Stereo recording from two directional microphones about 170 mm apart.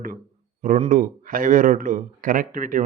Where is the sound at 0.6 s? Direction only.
50° right (ahead or behind).